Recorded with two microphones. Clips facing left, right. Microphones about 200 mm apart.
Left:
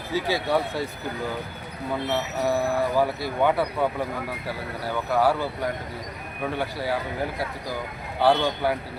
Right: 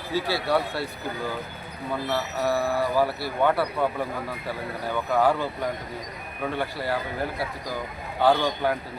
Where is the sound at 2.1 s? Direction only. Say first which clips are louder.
Even; 15° left (ahead or behind).